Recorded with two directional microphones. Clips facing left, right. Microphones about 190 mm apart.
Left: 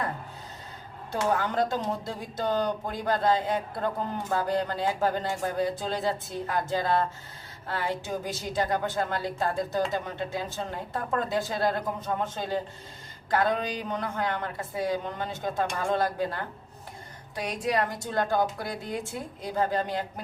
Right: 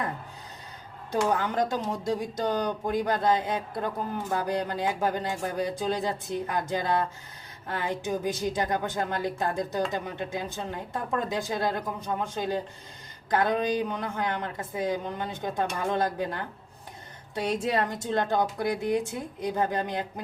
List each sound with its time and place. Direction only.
1.1 s a woman's voice: 15° right (ahead or behind)